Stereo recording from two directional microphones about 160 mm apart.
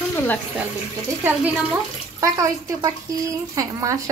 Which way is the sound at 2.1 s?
20° right (ahead or behind).